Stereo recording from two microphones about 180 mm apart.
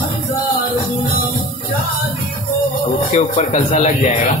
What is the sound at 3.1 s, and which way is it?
Speech, 40° left (ahead or behind).